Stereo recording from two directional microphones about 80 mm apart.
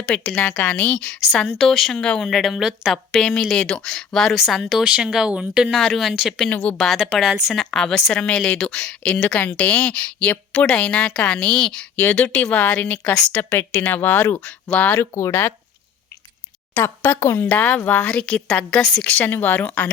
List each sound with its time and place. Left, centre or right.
0.0 s a woman's voice: centre
1.5 s speech: centre
2.9 s speech: centre
5.7 s speech: centre
6.5 s speech: centre
6.7 s a woman's voice: centre
11.9 s a woman's voice: left
14.4 s a woman's voice: centre
14.9 s speech: left
15.3 s speech: left
16.7 s speech: left
17.6 s a woman's voice: centre
19.2 s speech: left